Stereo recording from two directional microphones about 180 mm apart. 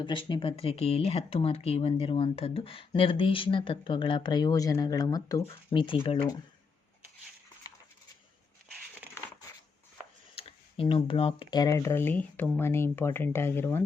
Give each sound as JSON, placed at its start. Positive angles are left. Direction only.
{"t": 0.0, "sound": "speech", "side_deg": 25}
{"t": 10.3, "sound": "speech", "side_deg": 30}